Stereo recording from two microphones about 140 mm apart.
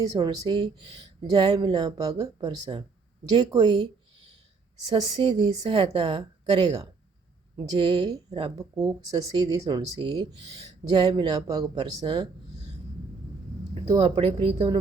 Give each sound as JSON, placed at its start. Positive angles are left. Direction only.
{"t": 0.2, "sound": "a woman's voice", "side_deg": -30}
{"t": 4.9, "sound": "a woman's voice", "side_deg": -35}
{"t": 7.8, "sound": "a woman's voice", "side_deg": -35}
{"t": 8.5, "sound": "a woman's voice", "side_deg": -25}
{"t": 13.7, "sound": "a woman's voice", "side_deg": -40}